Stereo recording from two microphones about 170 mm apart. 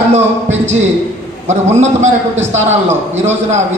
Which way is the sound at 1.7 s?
40° right (ahead or behind).